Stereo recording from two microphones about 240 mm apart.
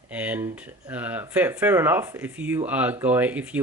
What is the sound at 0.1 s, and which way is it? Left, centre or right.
Speech, centre.